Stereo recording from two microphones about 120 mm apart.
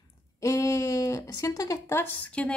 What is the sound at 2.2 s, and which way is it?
Speech, 10° left (ahead or behind).